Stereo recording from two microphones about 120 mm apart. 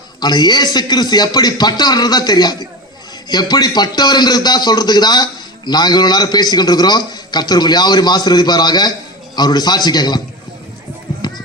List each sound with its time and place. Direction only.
0.2 s a man's voice: 35° left (ahead or behind)
11.2 s run: 35° left (ahead or behind)